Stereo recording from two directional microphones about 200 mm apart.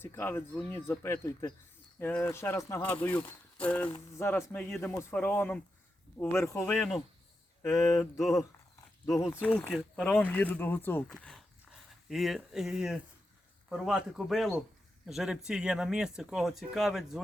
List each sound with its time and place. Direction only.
0.0 s speech: 10° left (ahead or behind)
7.6 s speech: 15° left (ahead or behind)
8.2 s speech: centre (ahead or behind)